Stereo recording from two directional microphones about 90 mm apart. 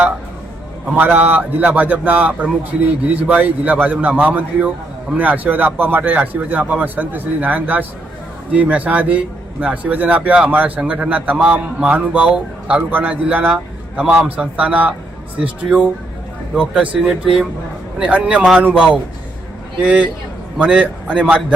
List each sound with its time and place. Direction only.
0.9 s a man's voice: 20° right (ahead or behind)